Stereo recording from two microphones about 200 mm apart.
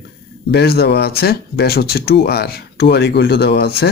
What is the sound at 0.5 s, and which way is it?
Speech, 55° left (ahead or behind).